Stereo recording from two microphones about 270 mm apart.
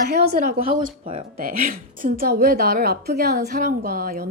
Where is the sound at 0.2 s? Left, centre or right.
Right.